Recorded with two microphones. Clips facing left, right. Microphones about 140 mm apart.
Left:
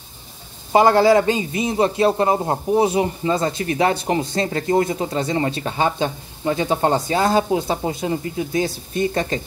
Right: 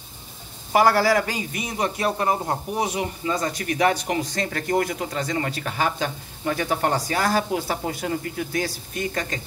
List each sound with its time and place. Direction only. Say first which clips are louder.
0.7 s a man's voice: left 5 dB; 20° left (ahead or behind)